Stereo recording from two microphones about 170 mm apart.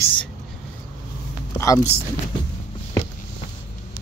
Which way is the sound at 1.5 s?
20° left (ahead or behind).